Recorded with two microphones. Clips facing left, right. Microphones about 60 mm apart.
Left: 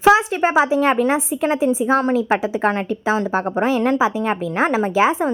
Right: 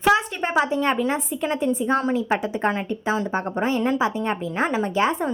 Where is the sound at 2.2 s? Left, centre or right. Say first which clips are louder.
Left 4 dB; left.